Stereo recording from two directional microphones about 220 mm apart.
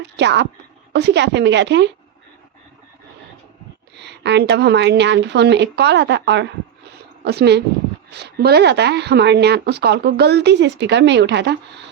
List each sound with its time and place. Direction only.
0.0 s a woman's voice: 50° right (ahead or behind)
3.9 s a woman's voice: 50° right (ahead or behind)